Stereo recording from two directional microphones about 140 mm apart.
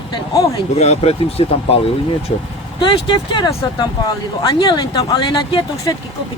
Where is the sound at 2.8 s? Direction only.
35° left (ahead or behind).